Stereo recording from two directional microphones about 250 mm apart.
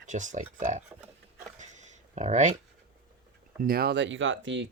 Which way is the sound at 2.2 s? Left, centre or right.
Right.